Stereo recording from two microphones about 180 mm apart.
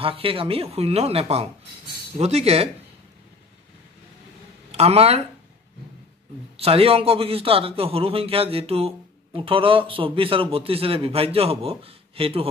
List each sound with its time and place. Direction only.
0.0 s a man's voice: 30° right (ahead or behind)
4.7 s a man's voice: 35° right (ahead or behind)
6.5 s a man's voice: 35° right (ahead or behind)